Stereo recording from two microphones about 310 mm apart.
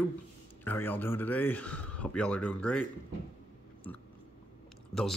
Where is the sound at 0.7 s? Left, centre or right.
Centre.